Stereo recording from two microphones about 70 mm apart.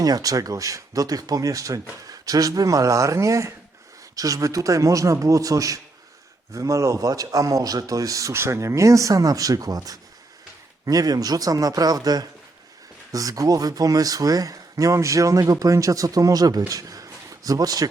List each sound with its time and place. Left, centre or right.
0.0 s speech: right
8.3 s speech: right